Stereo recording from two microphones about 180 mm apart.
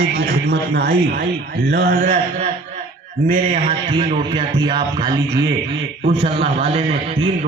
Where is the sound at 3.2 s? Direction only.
50° right (ahead or behind).